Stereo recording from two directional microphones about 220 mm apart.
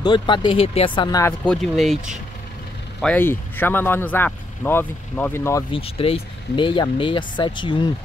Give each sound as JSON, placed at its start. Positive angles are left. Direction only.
{"t": 0.0, "sound": "speech", "side_deg": 20}
{"t": 1.4, "sound": "speech", "side_deg": 5}
{"t": 3.0, "sound": "speech", "side_deg": 5}
{"t": 5.8, "sound": "speech", "side_deg": 25}